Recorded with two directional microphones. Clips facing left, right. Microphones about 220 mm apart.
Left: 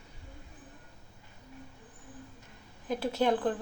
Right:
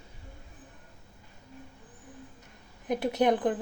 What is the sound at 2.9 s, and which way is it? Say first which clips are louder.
Speech: right 3 dB; 20° right (ahead or behind).